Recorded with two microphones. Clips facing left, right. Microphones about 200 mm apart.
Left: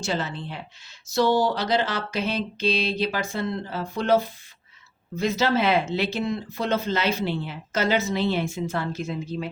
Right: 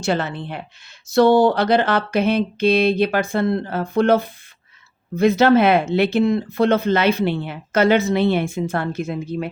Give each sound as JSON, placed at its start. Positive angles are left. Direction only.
{"t": 0.0, "sound": "speech", "side_deg": -55}